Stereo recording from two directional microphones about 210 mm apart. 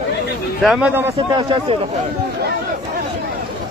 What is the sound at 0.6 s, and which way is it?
Speech, 5° right (ahead or behind).